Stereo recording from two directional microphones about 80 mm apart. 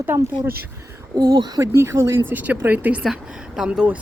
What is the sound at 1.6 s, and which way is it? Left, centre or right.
Speech, right.